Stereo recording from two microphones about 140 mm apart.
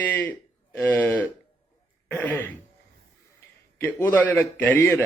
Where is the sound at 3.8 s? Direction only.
15° left (ahead or behind).